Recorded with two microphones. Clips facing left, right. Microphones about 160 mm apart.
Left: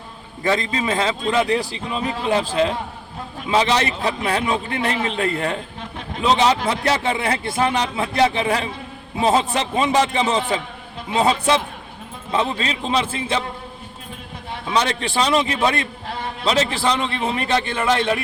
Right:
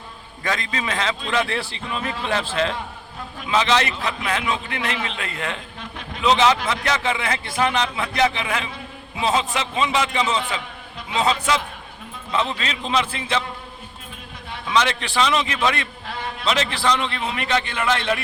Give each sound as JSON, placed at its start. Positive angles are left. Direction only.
{"t": 0.4, "sound": "a man's voice", "side_deg": 30}
{"t": 3.5, "sound": "a man's voice", "side_deg": 30}
{"t": 14.7, "sound": "a man's voice", "side_deg": 35}